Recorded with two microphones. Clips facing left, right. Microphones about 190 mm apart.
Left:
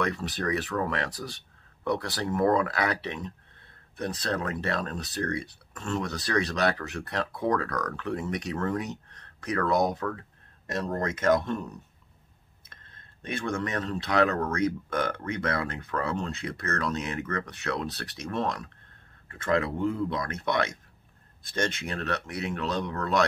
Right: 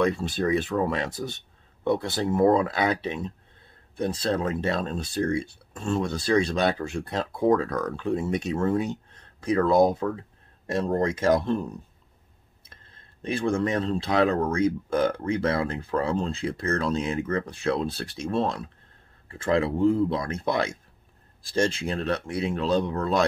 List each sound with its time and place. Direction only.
0.0 s speech: 25° right (ahead or behind)
13.3 s speech: 30° right (ahead or behind)